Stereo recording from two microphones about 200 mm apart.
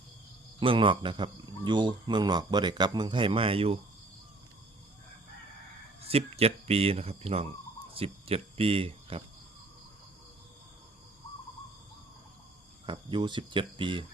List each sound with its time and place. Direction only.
0.6 s a man's voice: 25° right (ahead or behind)
6.0 s a man's voice: 30° right (ahead or behind)
12.8 s a man's voice: 25° right (ahead or behind)